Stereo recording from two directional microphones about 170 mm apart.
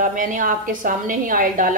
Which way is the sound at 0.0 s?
50° right (ahead or behind).